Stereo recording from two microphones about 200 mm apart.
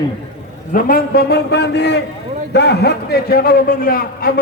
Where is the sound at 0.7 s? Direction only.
50° left (ahead or behind).